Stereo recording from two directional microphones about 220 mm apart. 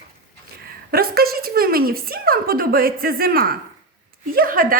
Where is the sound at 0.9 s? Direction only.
45° right (ahead or behind).